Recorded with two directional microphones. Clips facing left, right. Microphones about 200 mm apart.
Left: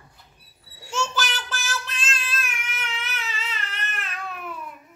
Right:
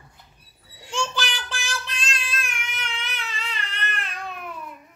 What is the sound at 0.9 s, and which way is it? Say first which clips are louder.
Child singing: left 1 dB; 5° left (ahead or behind).